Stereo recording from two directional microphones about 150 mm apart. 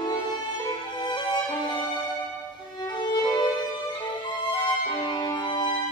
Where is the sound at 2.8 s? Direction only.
30° left (ahead or behind).